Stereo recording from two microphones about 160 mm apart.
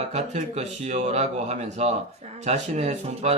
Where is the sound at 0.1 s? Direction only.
45° right (ahead or behind).